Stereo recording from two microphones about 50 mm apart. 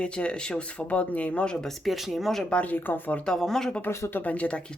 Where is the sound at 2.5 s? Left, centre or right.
Left.